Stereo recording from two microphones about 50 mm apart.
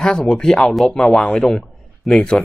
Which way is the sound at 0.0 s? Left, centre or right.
Centre.